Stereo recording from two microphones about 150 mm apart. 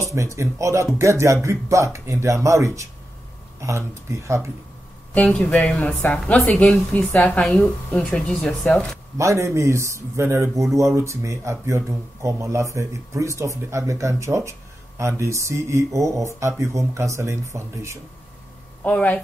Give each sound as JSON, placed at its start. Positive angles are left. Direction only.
{"t": 0.0, "sound": "speech", "side_deg": -20}
{"t": 5.1, "sound": "speech", "side_deg": 10}
{"t": 9.2, "sound": "speech", "side_deg": -20}
{"t": 18.9, "sound": "speech", "side_deg": 10}